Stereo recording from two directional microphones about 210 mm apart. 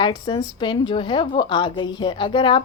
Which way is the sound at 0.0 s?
20° left (ahead or behind).